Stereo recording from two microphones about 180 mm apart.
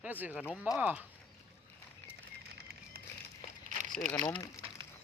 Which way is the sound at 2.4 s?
60° right (ahead or behind).